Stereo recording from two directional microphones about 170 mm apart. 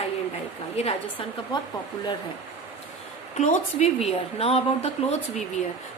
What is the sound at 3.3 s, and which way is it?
A woman's voice, 45° left (ahead or behind).